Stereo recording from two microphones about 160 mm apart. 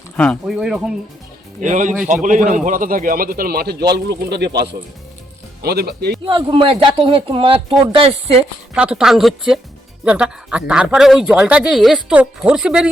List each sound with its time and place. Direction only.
0.2 s speech: centre (ahead or behind)
1.6 s a man's voice: 50° right (ahead or behind)
2.4 s speech: 5° right (ahead or behind)
2.6 s speech: 60° right (ahead or behind); by 6.1 s 90° right
6.2 s a man's voice: 35° right (ahead or behind)
8.7 s speech: 5° right (ahead or behind)